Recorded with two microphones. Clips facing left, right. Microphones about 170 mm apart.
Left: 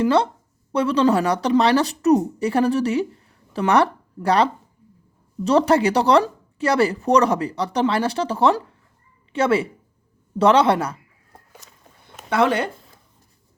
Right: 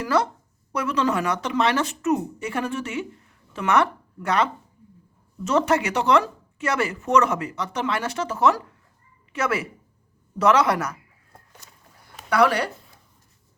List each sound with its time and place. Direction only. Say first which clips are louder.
0.0 s speech: left 5 dB; 30° left (ahead or behind)
12.3 s speech: left 1 dB; 25° left (ahead or behind)